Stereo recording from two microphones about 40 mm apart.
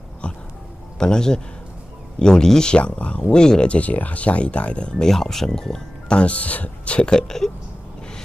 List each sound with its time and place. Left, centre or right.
0.2 s music: left
0.9 s speech: centre
2.7 s speech: left
5.0 s speech: centre
6.1 s speech: left
7.0 s speech: centre